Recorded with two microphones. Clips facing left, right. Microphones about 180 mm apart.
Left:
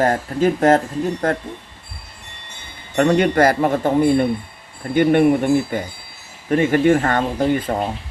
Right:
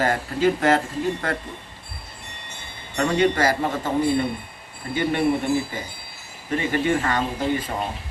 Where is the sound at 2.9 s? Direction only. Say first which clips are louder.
Left 5 dB; 55° left (ahead or behind).